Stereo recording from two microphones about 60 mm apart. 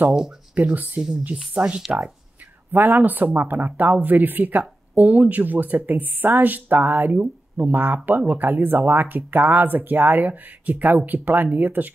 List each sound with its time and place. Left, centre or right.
0.6 s speech: right
2.7 s speech: right